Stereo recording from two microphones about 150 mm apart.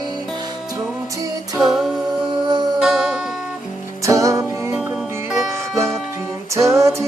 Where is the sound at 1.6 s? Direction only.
Centre (ahead or behind).